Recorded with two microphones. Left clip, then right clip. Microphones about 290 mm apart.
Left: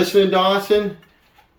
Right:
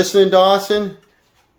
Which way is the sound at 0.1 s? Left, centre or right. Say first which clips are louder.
Right 7 dB; right.